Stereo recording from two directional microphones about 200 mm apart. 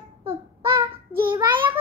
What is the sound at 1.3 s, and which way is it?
Speech, 25° right (ahead or behind).